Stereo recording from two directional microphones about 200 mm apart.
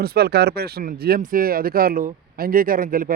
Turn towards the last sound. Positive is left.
turn(degrees=-45)  # may be behind; listen again after turning